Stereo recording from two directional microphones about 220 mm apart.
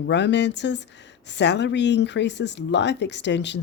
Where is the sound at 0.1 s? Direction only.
55° left (ahead or behind).